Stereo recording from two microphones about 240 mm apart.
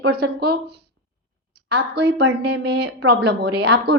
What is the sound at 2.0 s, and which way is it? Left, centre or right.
A woman's voice, right.